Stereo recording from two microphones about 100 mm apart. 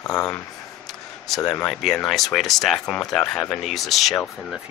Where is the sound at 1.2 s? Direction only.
5° left (ahead or behind).